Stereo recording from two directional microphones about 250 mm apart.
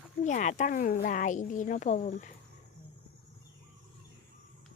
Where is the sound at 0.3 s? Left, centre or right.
Left.